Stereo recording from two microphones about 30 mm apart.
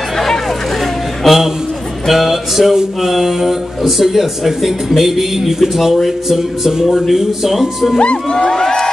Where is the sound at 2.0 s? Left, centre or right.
Centre.